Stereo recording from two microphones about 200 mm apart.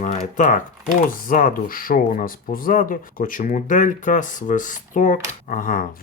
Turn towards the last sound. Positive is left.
turn(degrees=45)  # may be behind; listen again after turning